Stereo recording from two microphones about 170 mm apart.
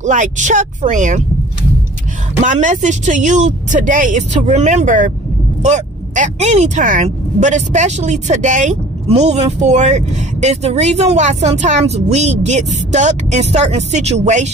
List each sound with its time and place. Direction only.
0.0 s speech: 50° right (ahead or behind)
2.4 s speech: 45° right (ahead or behind)